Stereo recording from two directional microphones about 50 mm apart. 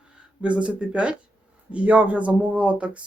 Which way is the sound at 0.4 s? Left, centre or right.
Right.